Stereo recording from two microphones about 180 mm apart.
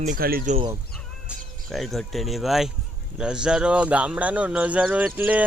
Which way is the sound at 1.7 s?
Centre (ahead or behind).